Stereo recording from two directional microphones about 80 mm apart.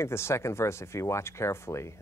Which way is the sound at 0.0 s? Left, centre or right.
Left.